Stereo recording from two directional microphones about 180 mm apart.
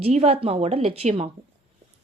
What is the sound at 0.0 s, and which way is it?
Speech, 35° right (ahead or behind).